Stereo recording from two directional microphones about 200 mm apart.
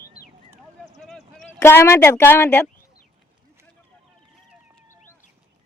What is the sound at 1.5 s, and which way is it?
Speech, 10° left (ahead or behind).